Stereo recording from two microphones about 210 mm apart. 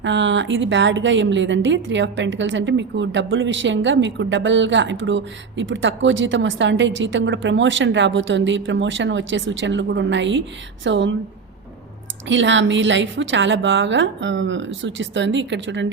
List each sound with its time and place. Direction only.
0.0 s a woman's voice: 60° right (ahead or behind)
12.3 s a woman's voice: 60° right (ahead or behind)